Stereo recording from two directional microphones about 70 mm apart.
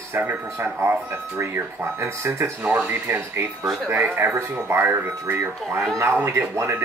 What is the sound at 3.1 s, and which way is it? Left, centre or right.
Speech, right.